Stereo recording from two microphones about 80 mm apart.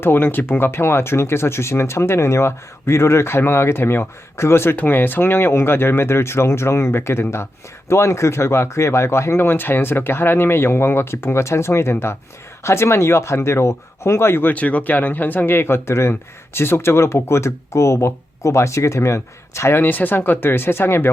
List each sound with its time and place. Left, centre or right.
0.0 s speech: left